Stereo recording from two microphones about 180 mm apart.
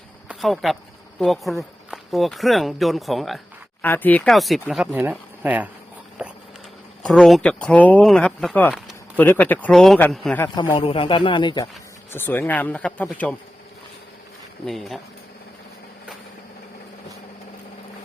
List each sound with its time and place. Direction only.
0.3 s speech: centre (ahead or behind)
7.0 s speech: centre (ahead or behind)
10.8 s a man's voice: 30° left (ahead or behind)
12.1 s speech: 10° left (ahead or behind)
14.7 s speech: centre (ahead or behind)